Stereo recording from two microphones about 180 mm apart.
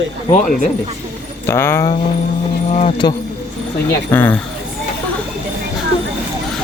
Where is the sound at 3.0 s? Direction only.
25° left (ahead or behind).